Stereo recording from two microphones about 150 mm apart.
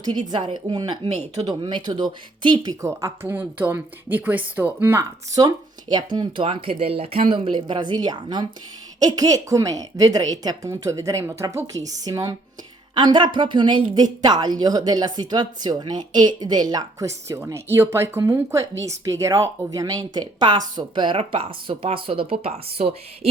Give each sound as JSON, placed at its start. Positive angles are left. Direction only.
{"t": 0.3, "sound": "speech", "side_deg": -30}
{"t": 1.0, "sound": "speech", "side_deg": -45}
{"t": 1.6, "sound": "speech", "side_deg": -30}
{"t": 2.8, "sound": "speech", "side_deg": -20}